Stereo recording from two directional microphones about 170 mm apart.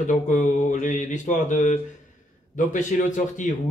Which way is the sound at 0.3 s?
50° left (ahead or behind).